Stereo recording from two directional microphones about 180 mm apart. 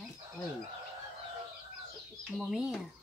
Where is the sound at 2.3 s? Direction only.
5° right (ahead or behind).